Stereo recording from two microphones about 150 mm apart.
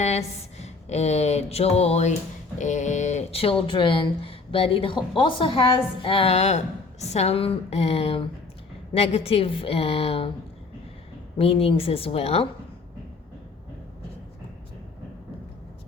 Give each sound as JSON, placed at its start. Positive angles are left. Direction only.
{"t": 0.0, "sound": "a sound", "side_deg": 45}
{"t": 2.6, "sound": "a woman's voice", "side_deg": 55}
{"t": 11.3, "sound": "speech", "side_deg": 40}